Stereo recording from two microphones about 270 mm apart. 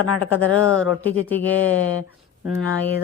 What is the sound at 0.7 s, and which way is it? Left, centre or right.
Speech, centre.